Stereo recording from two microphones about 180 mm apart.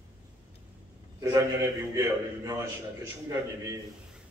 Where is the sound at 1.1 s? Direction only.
20° right (ahead or behind).